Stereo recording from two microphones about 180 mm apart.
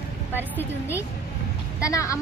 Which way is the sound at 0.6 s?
15° left (ahead or behind).